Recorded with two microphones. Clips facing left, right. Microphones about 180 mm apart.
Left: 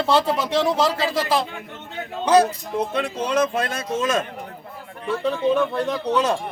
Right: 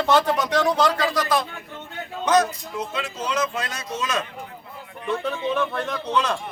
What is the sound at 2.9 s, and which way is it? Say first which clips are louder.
A man's voice: left 3 dB; 60° left (ahead or behind).